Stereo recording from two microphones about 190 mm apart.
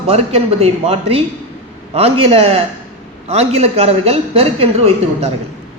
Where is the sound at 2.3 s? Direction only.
30° right (ahead or behind).